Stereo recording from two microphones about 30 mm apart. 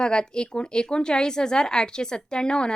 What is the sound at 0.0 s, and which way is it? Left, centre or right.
A woman's voice, left.